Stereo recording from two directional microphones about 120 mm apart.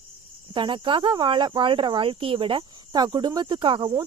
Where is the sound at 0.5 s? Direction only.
45° right (ahead or behind).